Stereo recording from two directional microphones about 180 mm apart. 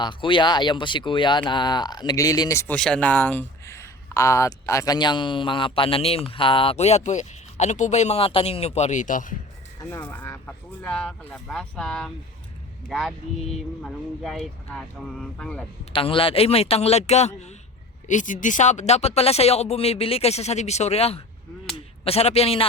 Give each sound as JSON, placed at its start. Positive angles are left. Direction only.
{"t": 0.0, "sound": "speech", "side_deg": 25}
{"t": 9.9, "sound": "speech", "side_deg": 10}
{"t": 15.9, "sound": "speech", "side_deg": 30}